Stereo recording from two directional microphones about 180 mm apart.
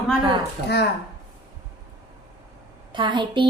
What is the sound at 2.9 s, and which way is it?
Speech, 25° right (ahead or behind).